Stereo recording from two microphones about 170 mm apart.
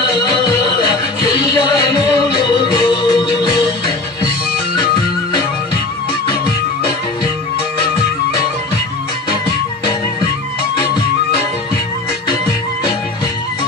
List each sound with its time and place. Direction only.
1.4 s music: 25° left (ahead or behind)